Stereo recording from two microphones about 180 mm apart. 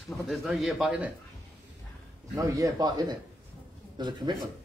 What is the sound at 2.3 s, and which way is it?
Speech, 20° right (ahead or behind).